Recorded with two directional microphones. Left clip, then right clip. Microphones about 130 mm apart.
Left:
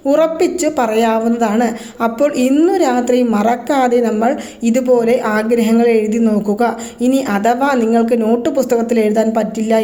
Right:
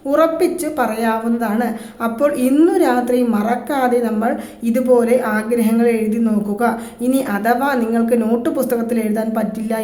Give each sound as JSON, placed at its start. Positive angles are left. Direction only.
{"t": 0.1, "sound": "a woman's voice", "side_deg": 35}